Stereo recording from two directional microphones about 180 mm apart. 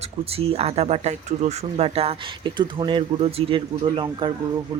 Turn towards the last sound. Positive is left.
turn(degrees=-25)  # may be behind; listen again after turning